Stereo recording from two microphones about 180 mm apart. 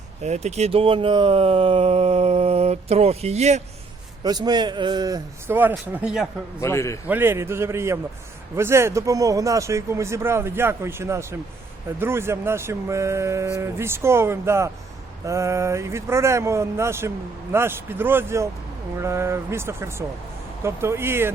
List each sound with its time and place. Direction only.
0.2 s speech: 40° right (ahead or behind)
4.2 s a man's voice: 20° right (ahead or behind); by 6.2 s 5° right (ahead or behind)
6.6 s a man's voice: 15° left (ahead or behind)
7.1 s speech: 10° right (ahead or behind)